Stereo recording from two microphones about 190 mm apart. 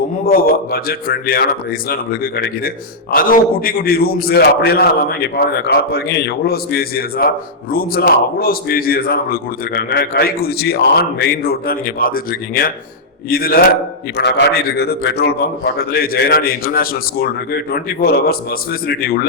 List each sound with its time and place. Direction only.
0.3 s a man's voice: 50° left (ahead or behind)
14.2 s a man's voice: 60° left (ahead or behind)